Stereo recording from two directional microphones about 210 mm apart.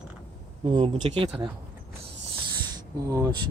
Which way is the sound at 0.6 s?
25° right (ahead or behind).